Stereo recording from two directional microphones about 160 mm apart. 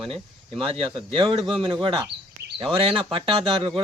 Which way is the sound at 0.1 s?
35° right (ahead or behind).